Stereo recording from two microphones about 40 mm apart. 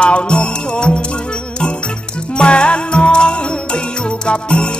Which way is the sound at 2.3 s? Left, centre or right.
Left.